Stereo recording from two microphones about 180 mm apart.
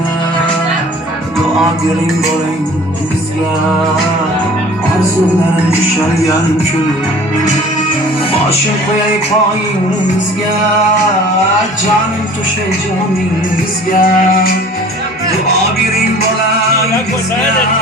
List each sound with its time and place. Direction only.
13.9 s music: 50° left (ahead or behind)